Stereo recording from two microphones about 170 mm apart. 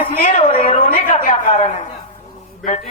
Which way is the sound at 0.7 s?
50° left (ahead or behind).